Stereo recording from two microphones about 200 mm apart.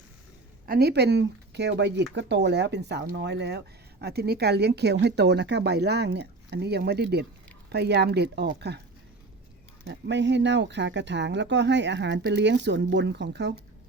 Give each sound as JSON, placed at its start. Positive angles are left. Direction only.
{"t": 0.6, "sound": "speech", "side_deg": -50}
{"t": 9.8, "sound": "speech", "side_deg": -60}